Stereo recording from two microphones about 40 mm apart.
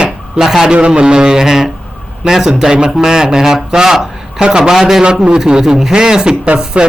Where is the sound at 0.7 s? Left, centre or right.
Right.